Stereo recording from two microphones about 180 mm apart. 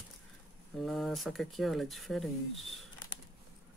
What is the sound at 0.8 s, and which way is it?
Speech, centre (ahead or behind).